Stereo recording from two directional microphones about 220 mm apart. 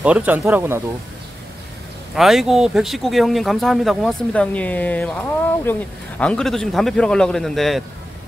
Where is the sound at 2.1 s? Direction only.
Centre (ahead or behind).